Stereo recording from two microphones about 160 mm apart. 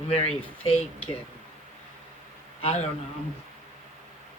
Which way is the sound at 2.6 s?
40° left (ahead or behind).